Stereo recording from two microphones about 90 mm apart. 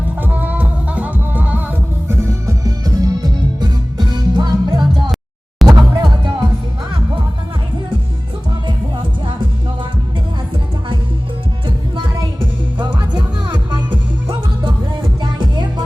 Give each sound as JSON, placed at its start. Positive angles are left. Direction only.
{"t": 0.2, "sound": "music", "side_deg": -20}
{"t": 2.5, "sound": "music", "side_deg": -45}
{"t": 12.8, "sound": "music", "side_deg": -60}